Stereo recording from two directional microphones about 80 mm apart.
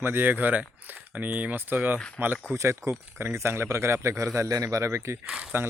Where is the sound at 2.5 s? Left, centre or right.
Right.